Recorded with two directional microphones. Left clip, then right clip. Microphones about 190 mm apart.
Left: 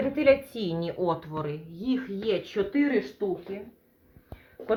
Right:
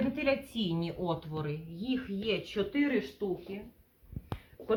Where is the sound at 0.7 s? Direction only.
35° left (ahead or behind).